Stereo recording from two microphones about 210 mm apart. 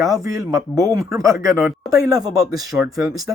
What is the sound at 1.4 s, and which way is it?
Speech, centre (ahead or behind).